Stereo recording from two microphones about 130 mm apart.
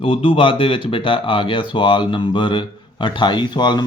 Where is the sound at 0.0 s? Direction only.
45° left (ahead or behind).